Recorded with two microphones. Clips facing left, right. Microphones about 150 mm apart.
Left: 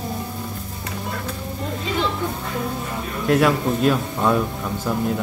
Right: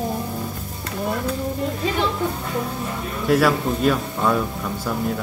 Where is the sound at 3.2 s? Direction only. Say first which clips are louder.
Even; centre (ahead or behind).